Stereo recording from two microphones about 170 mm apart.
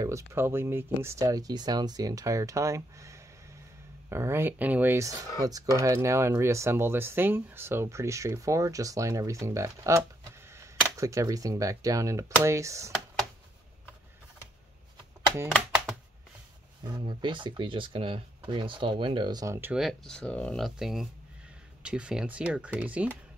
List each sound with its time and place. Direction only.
0.0 s speech: 15° right (ahead or behind)
17.0 s speech: 30° right (ahead or behind)
19.7 s speech: centre (ahead or behind)